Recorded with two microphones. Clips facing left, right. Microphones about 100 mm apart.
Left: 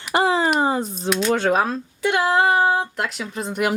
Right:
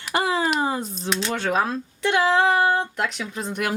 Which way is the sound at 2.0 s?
5° left (ahead or behind).